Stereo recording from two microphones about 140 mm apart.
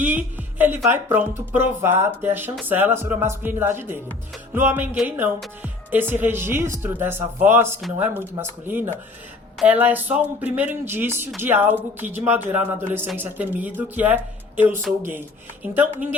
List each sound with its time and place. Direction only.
0.6 s a man's voice: 15° right (ahead or behind)